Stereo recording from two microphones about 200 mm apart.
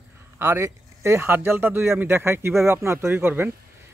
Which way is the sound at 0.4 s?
15° right (ahead or behind).